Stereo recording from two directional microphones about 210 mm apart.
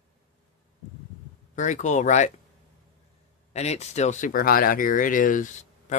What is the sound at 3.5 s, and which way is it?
Speech, 30° left (ahead or behind).